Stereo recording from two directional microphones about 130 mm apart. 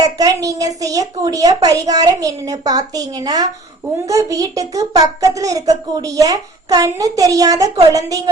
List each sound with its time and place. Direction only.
0.0 s a woman's voice: 25° right (ahead or behind)